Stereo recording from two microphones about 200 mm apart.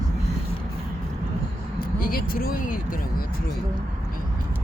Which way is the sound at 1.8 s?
45° left (ahead or behind).